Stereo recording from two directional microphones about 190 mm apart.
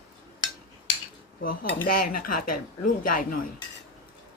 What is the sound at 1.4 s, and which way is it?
Speech, 50° left (ahead or behind).